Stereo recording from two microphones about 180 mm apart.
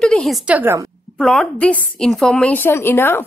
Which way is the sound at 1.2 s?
5° left (ahead or behind).